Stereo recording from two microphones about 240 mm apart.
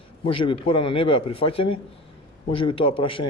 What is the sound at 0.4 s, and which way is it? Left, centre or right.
A man's voice, left.